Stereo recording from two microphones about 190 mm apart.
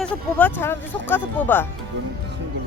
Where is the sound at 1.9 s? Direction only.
70° right (ahead or behind).